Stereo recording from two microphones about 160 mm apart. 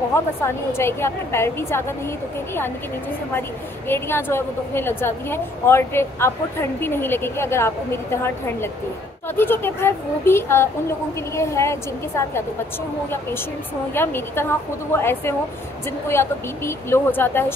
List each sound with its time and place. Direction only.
0.1 s a woman's voice: 15° left (ahead or behind)
3.9 s a woman's voice: 15° left (ahead or behind)
13.9 s a woman's voice: 15° left (ahead or behind)
16.1 s a woman's voice: 15° left (ahead or behind)